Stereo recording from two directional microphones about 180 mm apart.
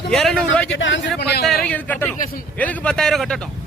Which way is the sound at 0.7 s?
90° left.